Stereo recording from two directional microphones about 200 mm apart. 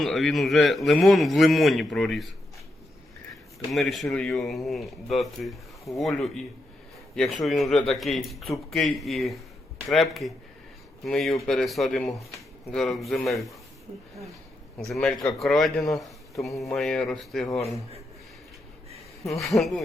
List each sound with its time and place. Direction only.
0.0 s a man's voice: centre (ahead or behind)
3.7 s a man's voice: centre (ahead or behind)
7.4 s a man's voice: centre (ahead or behind)
14.8 s a man's voice: centre (ahead or behind)
19.4 s a man's voice: centre (ahead or behind)